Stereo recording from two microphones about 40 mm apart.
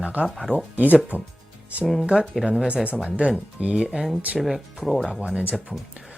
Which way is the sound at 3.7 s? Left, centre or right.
Centre.